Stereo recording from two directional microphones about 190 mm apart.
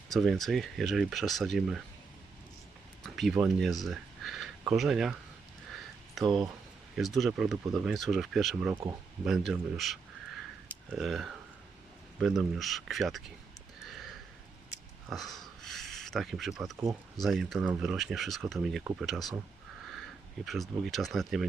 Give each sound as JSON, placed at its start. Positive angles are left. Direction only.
{"t": 0.1, "sound": "speech", "side_deg": 0}
{"t": 3.0, "sound": "a sound", "side_deg": 0}
{"t": 3.3, "sound": "speech", "side_deg": 0}
{"t": 6.2, "sound": "speech", "side_deg": -25}
{"t": 6.9, "sound": "speech", "side_deg": 0}
{"t": 13.9, "sound": "a sound", "side_deg": 0}
{"t": 15.1, "sound": "speech", "side_deg": 0}